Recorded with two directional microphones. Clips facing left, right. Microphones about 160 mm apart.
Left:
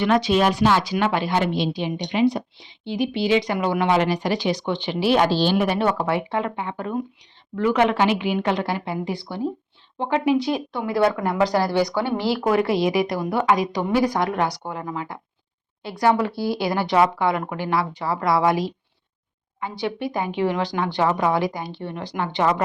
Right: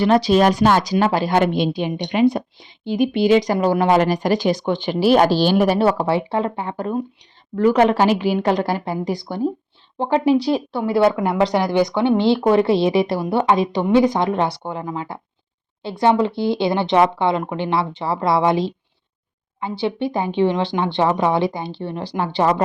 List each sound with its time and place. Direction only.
0.0 s a woman's voice: 35° right (ahead or behind)
1.4 s a woman's voice: 55° right (ahead or behind); by 22.6 s 30° right (ahead or behind)